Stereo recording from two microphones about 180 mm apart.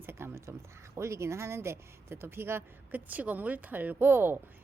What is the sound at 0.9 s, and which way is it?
Speech, 15° right (ahead or behind).